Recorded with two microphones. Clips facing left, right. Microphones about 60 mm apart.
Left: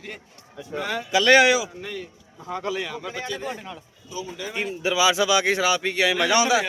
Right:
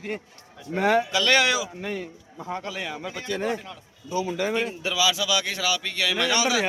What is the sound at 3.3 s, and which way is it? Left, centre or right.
Speech, right.